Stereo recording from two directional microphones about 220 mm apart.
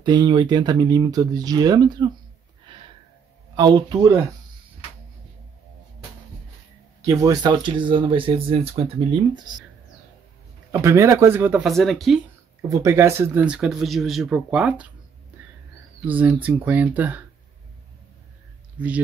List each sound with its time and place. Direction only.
0.0 s speech: 20° right (ahead or behind)
3.5 s speech: 20° right (ahead or behind)
7.1 s speech: 15° right (ahead or behind)
10.7 s speech: 15° right (ahead or behind)
12.6 s speech: 15° right (ahead or behind)
15.3 s a sound: 5° right (ahead or behind)
16.1 s speech: 5° right (ahead or behind)
18.8 s speech: 5° right (ahead or behind)